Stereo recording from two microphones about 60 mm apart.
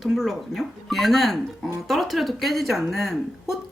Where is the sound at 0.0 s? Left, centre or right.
Centre.